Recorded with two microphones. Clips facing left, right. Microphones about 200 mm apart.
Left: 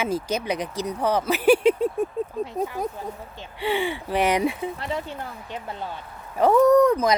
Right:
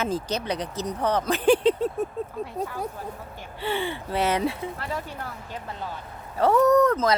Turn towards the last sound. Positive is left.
turn(degrees=15)  # may be behind; listen again after turning